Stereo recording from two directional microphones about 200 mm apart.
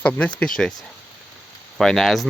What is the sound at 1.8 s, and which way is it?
Speech, centre (ahead or behind).